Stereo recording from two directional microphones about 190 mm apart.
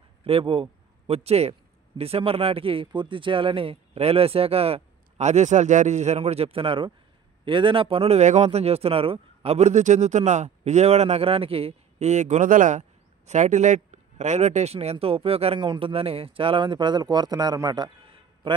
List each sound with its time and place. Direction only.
0.2 s a man's voice: 30° right (ahead or behind)